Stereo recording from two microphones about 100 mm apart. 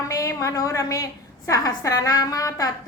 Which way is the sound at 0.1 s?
35° left (ahead or behind).